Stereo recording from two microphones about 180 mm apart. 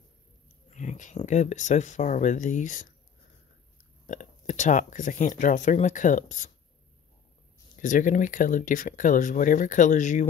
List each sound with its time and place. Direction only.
0.7 s speech: 40° left (ahead or behind)
4.1 s speech: 45° left (ahead or behind)
7.8 s speech: 45° left (ahead or behind)